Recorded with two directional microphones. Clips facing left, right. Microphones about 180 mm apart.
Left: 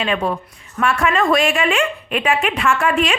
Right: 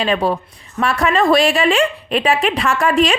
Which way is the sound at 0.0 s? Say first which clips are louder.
Right 3 dB; 35° right (ahead or behind).